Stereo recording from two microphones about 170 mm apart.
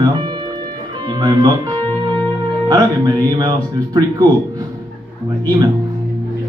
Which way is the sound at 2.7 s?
20° right (ahead or behind).